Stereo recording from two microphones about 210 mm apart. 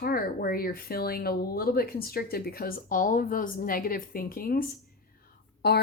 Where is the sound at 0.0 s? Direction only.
45° left (ahead or behind).